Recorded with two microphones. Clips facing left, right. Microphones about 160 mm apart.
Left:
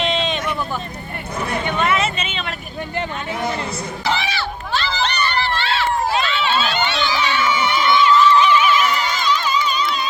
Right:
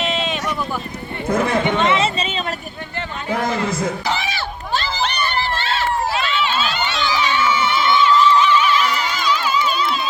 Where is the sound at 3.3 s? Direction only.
90° right.